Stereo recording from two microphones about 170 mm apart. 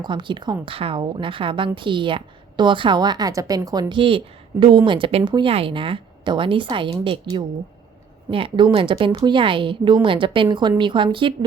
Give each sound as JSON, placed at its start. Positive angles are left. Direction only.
{"t": 0.0, "sound": "a woman's voice", "side_deg": -30}